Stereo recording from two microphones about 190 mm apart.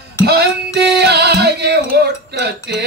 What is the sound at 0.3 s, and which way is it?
Music, 60° right (ahead or behind).